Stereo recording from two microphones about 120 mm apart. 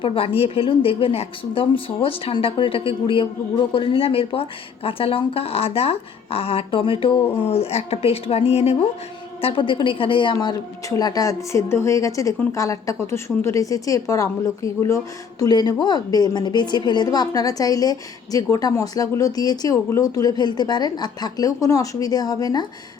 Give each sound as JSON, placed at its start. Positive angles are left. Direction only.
{"t": 0.0, "sound": "speech", "side_deg": 50}
{"t": 9.4, "sound": "speech", "side_deg": 50}
{"t": 10.8, "sound": "a woman's voice", "side_deg": 30}